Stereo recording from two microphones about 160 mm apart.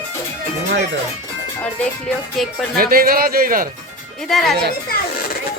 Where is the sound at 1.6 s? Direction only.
5° left (ahead or behind).